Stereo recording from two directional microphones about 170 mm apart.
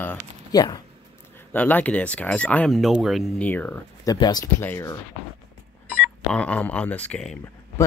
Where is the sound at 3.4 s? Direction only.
10° left (ahead or behind).